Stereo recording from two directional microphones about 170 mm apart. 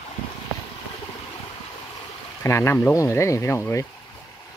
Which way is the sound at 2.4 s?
15° left (ahead or behind).